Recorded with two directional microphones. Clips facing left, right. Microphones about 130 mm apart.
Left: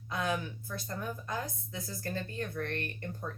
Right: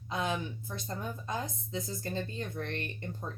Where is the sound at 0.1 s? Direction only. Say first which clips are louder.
Even; 20° right (ahead or behind).